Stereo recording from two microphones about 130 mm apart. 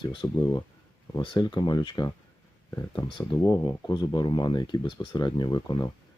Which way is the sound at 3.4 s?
25° left (ahead or behind).